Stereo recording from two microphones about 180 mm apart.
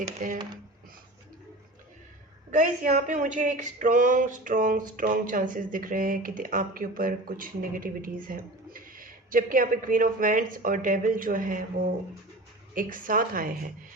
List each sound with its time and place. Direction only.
0.2 s speech: 45° right (ahead or behind)
2.5 s speech: 45° right (ahead or behind)
12.7 s speech: 50° right (ahead or behind)